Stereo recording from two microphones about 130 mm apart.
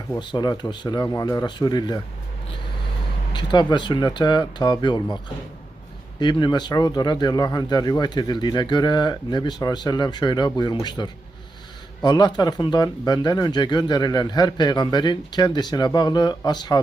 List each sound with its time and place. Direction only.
0.2 s speech: 35° left (ahead or behind)
3.3 s speech: 35° left (ahead or behind)